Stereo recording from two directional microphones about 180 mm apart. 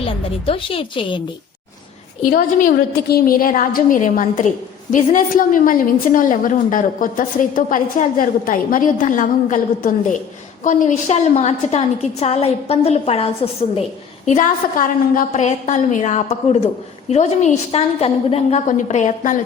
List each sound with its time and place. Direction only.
0.0 s a woman's voice: 30° left (ahead or behind)
2.2 s a woman's voice: 50° left (ahead or behind); by 13.8 s 30° left (ahead or behind)
14.3 s a woman's voice: 45° left (ahead or behind)